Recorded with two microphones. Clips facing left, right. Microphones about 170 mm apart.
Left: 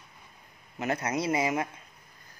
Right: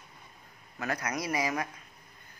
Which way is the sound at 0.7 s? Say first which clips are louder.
Left 4 dB; 25° left (ahead or behind).